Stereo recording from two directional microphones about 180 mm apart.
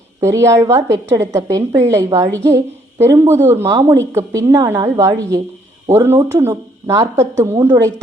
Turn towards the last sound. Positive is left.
turn(degrees=-20)  # may be behind; listen again after turning